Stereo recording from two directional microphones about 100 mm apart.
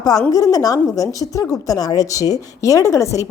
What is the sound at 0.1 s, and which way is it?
Speech, 35° left (ahead or behind).